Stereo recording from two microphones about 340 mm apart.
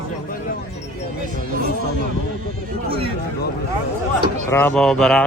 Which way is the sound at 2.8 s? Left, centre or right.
Centre.